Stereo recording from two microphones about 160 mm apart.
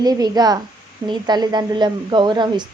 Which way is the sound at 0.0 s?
25° right (ahead or behind).